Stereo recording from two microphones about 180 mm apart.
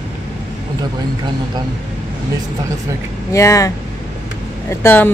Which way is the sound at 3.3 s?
15° left (ahead or behind).